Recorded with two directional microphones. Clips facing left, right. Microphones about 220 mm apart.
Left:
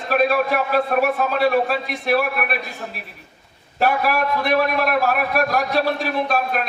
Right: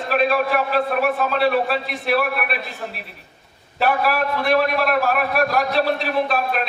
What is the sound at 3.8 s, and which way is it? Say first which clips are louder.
A man's voice: even; 45° left (ahead or behind).